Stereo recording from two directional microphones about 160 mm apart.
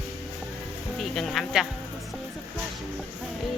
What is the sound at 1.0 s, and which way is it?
Speech, centre (ahead or behind).